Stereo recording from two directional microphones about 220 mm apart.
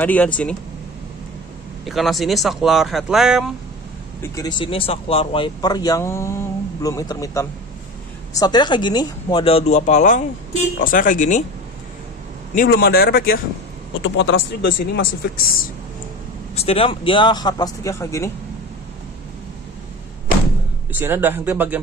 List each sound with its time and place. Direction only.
0.0 s speech: 5° left (ahead or behind)
1.9 s speech: centre (ahead or behind)
4.2 s speech: 20° left (ahead or behind); by 11.4 s 35° left (ahead or behind)
12.5 s speech: 45° left (ahead or behind)
14.0 s speech: 60° left (ahead or behind)
16.5 s speech: 25° left (ahead or behind)
20.9 s speech: 10° right (ahead or behind)